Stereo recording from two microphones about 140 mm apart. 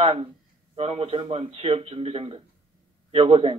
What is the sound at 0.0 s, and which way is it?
A man's voice, 45° right (ahead or behind).